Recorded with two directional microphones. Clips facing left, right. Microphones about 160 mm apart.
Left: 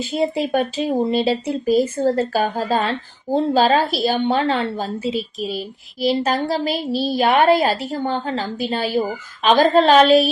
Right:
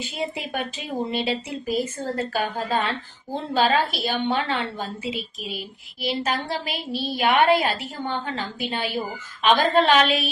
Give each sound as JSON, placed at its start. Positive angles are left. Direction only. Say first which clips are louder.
{"t": 0.0, "sound": "speech", "louder": "left 9 dB", "side_deg": 40}